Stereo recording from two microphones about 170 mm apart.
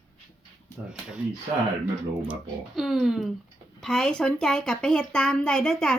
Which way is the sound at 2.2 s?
5° right (ahead or behind).